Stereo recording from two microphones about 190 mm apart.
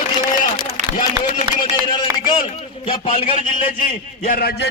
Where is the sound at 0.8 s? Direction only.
40° right (ahead or behind).